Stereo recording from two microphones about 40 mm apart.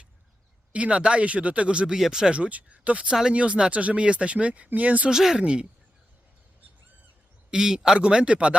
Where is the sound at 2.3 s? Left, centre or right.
Right.